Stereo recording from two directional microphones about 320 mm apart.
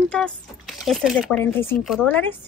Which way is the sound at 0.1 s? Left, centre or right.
Centre.